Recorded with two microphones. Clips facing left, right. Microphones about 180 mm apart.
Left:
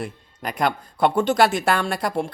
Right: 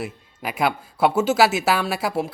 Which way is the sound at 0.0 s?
5° right (ahead or behind).